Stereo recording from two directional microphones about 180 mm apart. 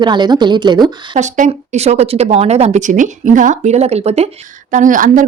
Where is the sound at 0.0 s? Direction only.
25° right (ahead or behind).